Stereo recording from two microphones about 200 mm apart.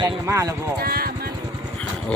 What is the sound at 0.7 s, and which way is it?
Speech, 50° right (ahead or behind).